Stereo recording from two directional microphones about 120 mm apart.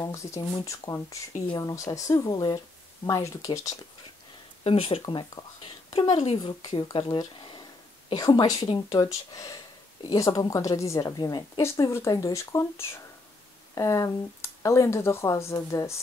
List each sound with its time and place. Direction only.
0.0 s a woman's voice: 25° left (ahead or behind)
4.6 s speech: 55° left (ahead or behind)
5.0 s speech: 35° left (ahead or behind)
6.1 s speech: 55° left (ahead or behind)
6.6 s speech: 35° left (ahead or behind)
6.9 s speech: 50° left (ahead or behind)
8.6 s speech: 45° left (ahead or behind)
8.9 s a woman's voice: 30° left (ahead or behind)